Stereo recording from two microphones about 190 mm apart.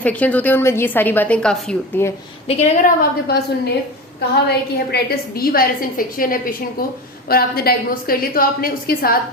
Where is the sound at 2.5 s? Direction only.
35° left (ahead or behind).